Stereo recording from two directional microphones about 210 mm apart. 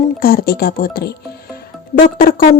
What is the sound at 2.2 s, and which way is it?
Speech, 40° left (ahead or behind).